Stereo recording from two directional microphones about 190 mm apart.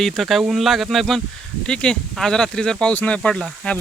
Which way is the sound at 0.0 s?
Centre (ahead or behind).